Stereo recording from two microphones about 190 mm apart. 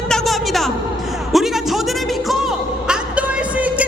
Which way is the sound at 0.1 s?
Centre (ahead or behind).